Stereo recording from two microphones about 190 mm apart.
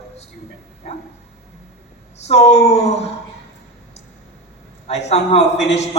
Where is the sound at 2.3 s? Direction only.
35° left (ahead or behind).